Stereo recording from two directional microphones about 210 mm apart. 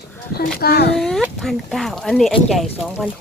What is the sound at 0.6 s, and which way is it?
Speech, 50° left (ahead or behind).